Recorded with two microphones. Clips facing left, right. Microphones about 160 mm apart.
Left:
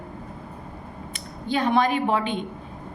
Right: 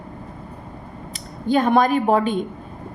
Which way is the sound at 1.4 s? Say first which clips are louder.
Right 5 dB; 45° right (ahead or behind).